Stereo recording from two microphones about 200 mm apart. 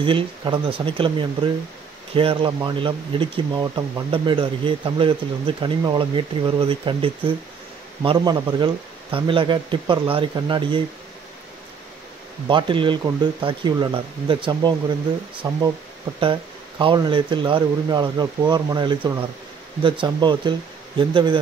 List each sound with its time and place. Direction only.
0.0 s speech: 25° right (ahead or behind)
12.4 s speech: 25° right (ahead or behind)